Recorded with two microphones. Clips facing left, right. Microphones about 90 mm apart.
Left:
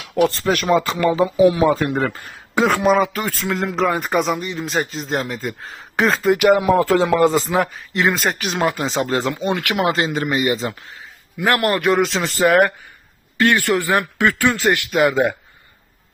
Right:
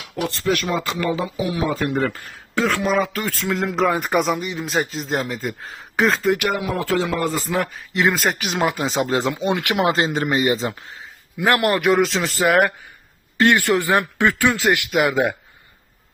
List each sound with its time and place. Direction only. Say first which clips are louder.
0.3 s speech: left 4 dB; 45° left (ahead or behind)
2.6 s speech: left 4 dB; 15° left (ahead or behind)
3.4 s speech: even; centre (ahead or behind)
6.6 s speech: left 6 dB; 35° left (ahead or behind)
7.3 s a man's voice: left 5 dB; 20° left (ahead or behind)
7.6 s a man's voice: left 1 dB; centre (ahead or behind); by 10.7 s 25° right (ahead or behind)
11.3 s speech: even; 15° right (ahead or behind)
11.9 s speech: even; centre (ahead or behind)
13.4 s speech: even; 20° right (ahead or behind)
14.5 s speech: left 1 dB; centre (ahead or behind)